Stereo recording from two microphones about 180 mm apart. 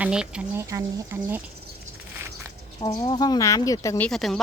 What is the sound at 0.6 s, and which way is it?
Speech, 20° right (ahead or behind).